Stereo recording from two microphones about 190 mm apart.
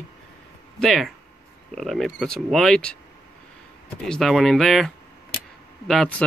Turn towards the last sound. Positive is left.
turn(degrees=5)  # may be behind; listen again after turning